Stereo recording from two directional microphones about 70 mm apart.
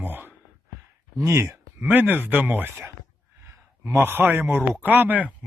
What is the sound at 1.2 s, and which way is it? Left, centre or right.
Speech, right.